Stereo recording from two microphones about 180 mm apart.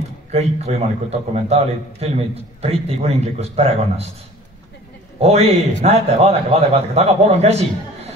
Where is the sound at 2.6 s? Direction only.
35° right (ahead or behind).